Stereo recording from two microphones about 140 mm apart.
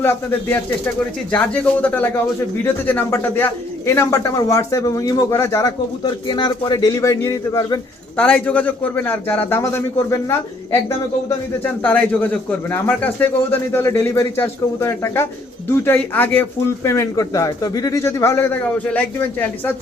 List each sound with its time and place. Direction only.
0.0 s a man's voice: 15° left (ahead or behind)
6.0 s a man's voice: 35° left (ahead or behind); by 19.7 s 15° left (ahead or behind)